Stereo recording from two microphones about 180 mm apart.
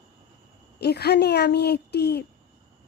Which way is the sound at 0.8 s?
65° left (ahead or behind).